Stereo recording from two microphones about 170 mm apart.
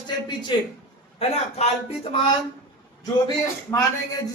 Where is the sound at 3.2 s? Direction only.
20° left (ahead or behind).